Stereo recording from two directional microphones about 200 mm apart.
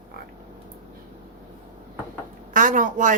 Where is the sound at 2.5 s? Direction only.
40° right (ahead or behind).